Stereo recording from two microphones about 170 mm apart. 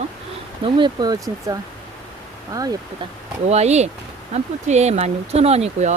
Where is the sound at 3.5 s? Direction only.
40° right (ahead or behind).